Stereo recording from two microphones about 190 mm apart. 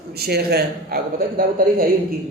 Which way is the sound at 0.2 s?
55° right (ahead or behind).